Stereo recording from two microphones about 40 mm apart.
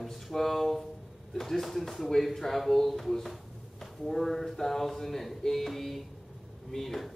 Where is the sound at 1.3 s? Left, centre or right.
Centre.